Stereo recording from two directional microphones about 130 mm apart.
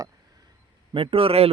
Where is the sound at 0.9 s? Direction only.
45° right (ahead or behind).